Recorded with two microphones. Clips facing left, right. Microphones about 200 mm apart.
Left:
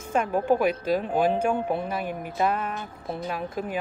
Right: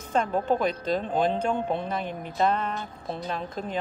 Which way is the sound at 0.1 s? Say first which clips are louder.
Left 2 dB; 10° left (ahead or behind).